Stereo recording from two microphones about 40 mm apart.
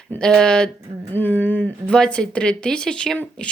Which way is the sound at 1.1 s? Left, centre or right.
Left.